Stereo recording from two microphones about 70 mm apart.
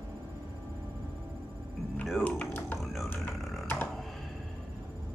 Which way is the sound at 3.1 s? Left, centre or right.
Left.